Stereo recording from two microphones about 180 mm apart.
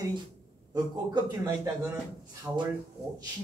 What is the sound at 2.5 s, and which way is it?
Speech, 5° right (ahead or behind).